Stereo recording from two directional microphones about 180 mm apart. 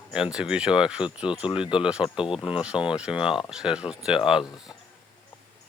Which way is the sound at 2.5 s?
5° right (ahead or behind).